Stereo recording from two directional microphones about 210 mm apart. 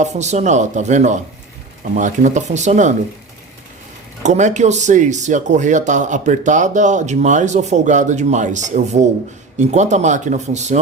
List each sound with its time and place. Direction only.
0.0 s speech: 35° right (ahead or behind)
4.2 s speech: 35° right (ahead or behind)